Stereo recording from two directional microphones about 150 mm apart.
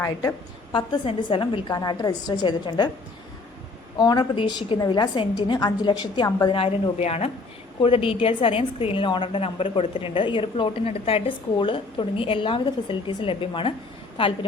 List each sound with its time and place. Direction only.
0.0 s a woman's voice: 20° left (ahead or behind)
0.7 s a woman's voice: 30° left (ahead or behind)
3.9 s a woman's voice: 30° left (ahead or behind)
7.0 s a woman's voice: 45° left (ahead or behind)